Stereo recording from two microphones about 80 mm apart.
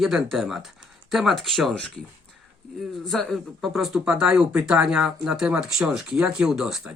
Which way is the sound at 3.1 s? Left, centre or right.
Centre.